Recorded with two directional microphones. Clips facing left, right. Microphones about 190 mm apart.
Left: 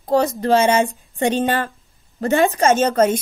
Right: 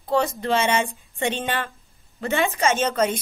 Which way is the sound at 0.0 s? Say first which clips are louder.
Left 5 dB; 40° left (ahead or behind).